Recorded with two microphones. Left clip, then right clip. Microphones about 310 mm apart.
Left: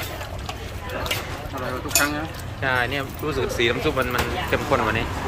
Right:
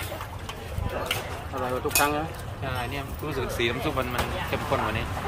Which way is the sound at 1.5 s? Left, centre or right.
Right.